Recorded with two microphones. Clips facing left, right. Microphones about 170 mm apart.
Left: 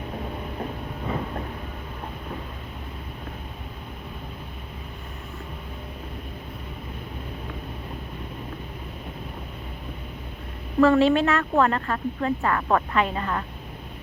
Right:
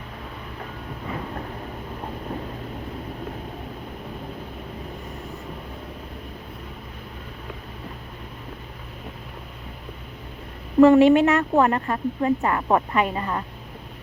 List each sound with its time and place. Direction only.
10.8 s a woman's voice: 15° right (ahead or behind)